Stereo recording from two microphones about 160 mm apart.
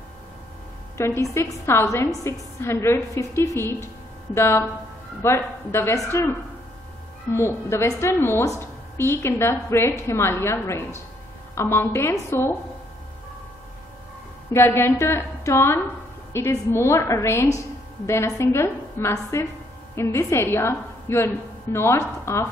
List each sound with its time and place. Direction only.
0.9 s a woman's voice: 15° left (ahead or behind)
7.3 s a woman's voice: 15° left (ahead or behind)
14.5 s a woman's voice: 15° left (ahead or behind)